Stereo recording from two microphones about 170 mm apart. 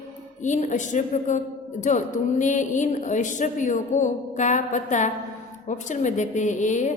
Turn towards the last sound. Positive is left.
turn(degrees=45)  # may be behind; listen again after turning